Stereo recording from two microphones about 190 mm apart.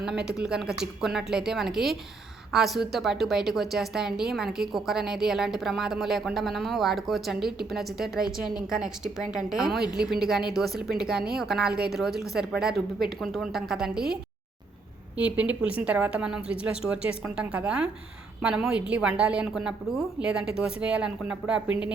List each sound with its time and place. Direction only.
0.0 s a woman's voice: 5° right (ahead or behind)
11.7 s a woman's voice: 55° right (ahead or behind)
12.4 s a woman's voice: 5° right (ahead or behind)